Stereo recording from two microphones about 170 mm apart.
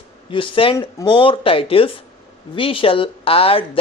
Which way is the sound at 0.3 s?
30° left (ahead or behind).